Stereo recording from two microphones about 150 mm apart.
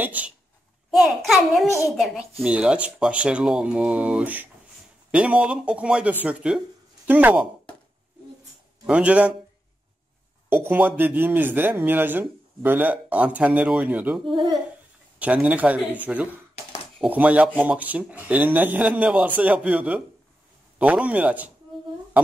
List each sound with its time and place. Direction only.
0.8 s a child's voice: centre (ahead or behind)
8.8 s speech: 10° right (ahead or behind)
10.5 s speech: 15° right (ahead or behind)
14.2 s a child's voice: 35° right (ahead or behind)
15.1 s speech: 10° right (ahead or behind)
17.0 s speech: 10° right (ahead or behind)